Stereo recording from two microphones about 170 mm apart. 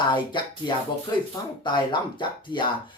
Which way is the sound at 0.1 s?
25° left (ahead or behind).